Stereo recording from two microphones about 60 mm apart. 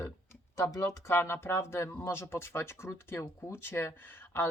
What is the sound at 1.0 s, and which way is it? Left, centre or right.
Speech, left.